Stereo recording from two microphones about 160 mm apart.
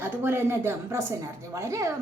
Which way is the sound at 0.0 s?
15° right (ahead or behind).